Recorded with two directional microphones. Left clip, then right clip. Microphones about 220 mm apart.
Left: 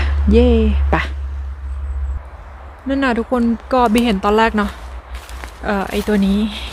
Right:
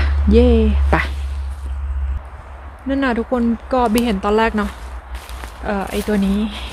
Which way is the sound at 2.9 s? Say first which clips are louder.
Left 1 dB; 10° left (ahead or behind).